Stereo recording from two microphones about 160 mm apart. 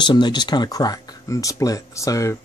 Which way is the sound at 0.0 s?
30° left (ahead or behind).